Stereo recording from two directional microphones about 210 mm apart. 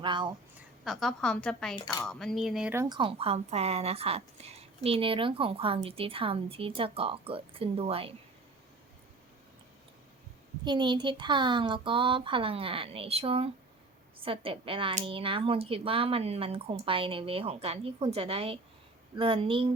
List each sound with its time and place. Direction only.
0.0 s a woman's voice: 20° right (ahead or behind)
0.9 s a woman's voice: centre (ahead or behind)
1.7 s cutlery: 20° left (ahead or behind)
2.0 s a woman's voice: centre (ahead or behind)
2.9 s a woman's voice: 25° right (ahead or behind)
10.6 s a woman's voice: 20° right (ahead or behind)